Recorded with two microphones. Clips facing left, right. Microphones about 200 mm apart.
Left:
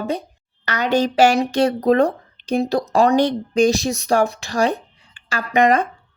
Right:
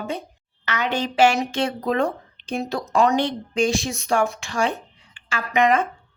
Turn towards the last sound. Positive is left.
turn(degrees=35)  # may be behind; listen again after turning